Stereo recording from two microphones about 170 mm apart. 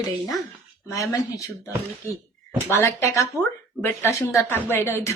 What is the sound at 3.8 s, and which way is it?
A woman's voice, 15° left (ahead or behind).